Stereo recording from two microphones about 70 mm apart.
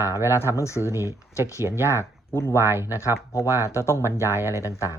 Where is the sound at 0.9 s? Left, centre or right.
Right.